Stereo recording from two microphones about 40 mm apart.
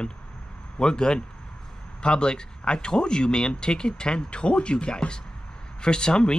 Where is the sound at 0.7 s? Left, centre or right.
Left.